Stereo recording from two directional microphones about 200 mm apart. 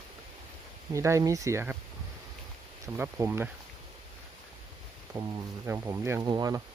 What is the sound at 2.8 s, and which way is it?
Speech, 10° right (ahead or behind).